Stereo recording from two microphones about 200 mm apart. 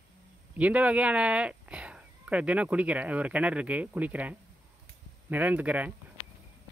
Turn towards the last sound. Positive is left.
turn(degrees=-10)  # may be behind; listen again after turning